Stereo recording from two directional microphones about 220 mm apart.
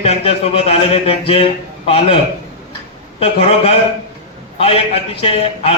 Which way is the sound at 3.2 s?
25° left (ahead or behind).